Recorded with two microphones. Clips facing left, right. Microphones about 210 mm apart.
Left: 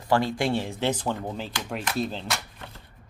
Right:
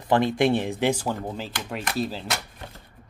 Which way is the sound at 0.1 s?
20° right (ahead or behind).